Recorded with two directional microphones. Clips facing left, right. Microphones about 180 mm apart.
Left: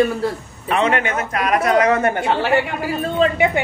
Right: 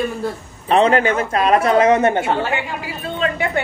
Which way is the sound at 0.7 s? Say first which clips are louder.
Right 4 dB; 35° right (ahead or behind).